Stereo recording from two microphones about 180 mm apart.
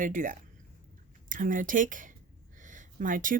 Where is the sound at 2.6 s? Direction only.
45° right (ahead or behind).